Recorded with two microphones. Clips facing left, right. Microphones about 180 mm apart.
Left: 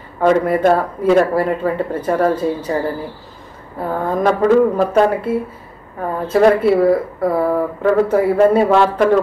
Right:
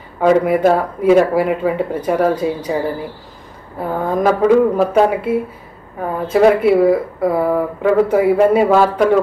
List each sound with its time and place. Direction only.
0.2 s speech: 5° right (ahead or behind)
3.9 s speech: 5° right (ahead or behind)